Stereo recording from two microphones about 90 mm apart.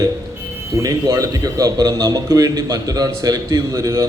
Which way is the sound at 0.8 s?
35° right (ahead or behind).